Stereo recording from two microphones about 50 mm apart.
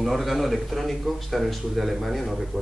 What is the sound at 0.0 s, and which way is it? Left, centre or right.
A man's voice, centre.